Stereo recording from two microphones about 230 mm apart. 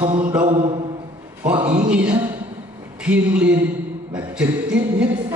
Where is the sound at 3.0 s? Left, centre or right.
Centre.